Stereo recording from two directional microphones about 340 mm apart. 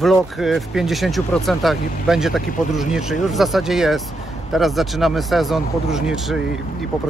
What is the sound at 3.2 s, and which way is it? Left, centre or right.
Speech, centre.